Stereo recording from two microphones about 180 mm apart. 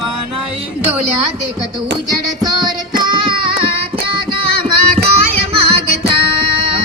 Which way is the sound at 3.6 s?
30° right (ahead or behind).